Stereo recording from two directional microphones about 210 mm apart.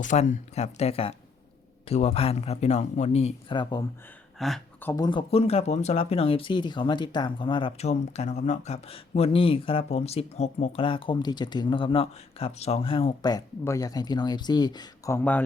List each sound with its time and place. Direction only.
0.0 s speech: 35° left (ahead or behind); by 3.8 s 20° left (ahead or behind)
4.4 s a sound: centre (ahead or behind)
4.9 s speech: 20° left (ahead or behind)